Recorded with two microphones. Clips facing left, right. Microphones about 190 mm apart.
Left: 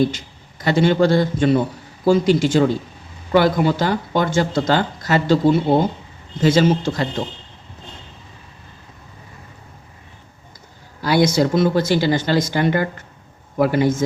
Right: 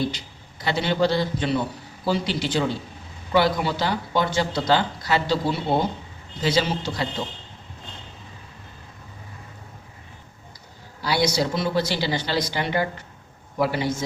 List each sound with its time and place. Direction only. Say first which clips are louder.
0.1 s a man's voice: left 3 dB; 45° left (ahead or behind)
11.0 s speech: left 6 dB; 50° left (ahead or behind)